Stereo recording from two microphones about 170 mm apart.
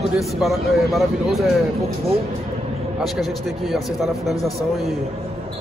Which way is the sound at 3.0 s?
Centre (ahead or behind).